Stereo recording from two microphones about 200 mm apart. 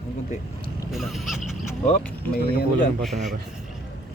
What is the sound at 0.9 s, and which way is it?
Music, centre (ahead or behind).